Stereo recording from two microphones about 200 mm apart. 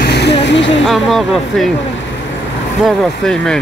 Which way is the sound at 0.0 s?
55° left (ahead or behind).